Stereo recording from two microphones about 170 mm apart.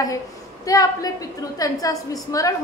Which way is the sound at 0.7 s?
20° left (ahead or behind).